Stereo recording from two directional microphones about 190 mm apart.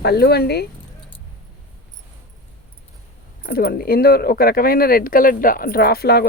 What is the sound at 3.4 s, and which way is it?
Speech, 55° left (ahead or behind).